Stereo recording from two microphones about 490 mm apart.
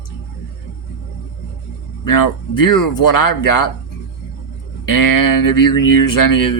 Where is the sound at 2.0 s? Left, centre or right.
Left.